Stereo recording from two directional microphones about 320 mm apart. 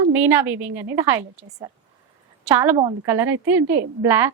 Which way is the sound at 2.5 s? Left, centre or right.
Centre.